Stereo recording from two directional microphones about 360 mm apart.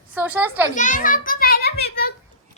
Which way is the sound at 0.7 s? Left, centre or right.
Left.